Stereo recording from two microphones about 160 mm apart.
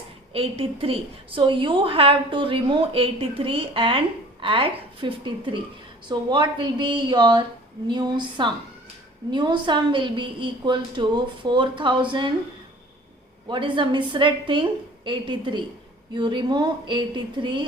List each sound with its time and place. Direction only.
0.3 s a woman's voice: 35° right (ahead or behind)
13.5 s a woman's voice: 30° right (ahead or behind)